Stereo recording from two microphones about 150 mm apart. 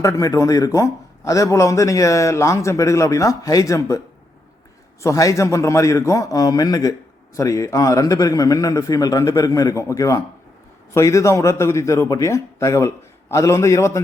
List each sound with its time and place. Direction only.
0.0 s a man's voice: 20° left (ahead or behind)
5.0 s a man's voice: 20° left (ahead or behind)